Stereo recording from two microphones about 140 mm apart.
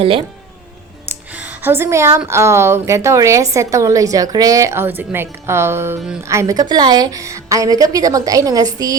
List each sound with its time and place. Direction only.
0.0 s speech: 40° right (ahead or behind)
1.3 s a woman's voice: 10° right (ahead or behind); by 9.0 s 25° right (ahead or behind)